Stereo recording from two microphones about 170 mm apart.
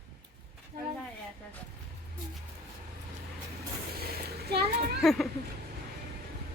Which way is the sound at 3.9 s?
65° right (ahead or behind).